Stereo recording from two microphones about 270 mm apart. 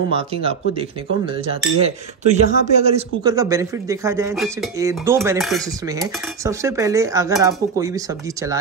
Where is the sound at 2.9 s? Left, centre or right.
Right.